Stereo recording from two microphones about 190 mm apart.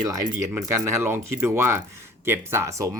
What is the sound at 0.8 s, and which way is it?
Speech, 15° right (ahead or behind).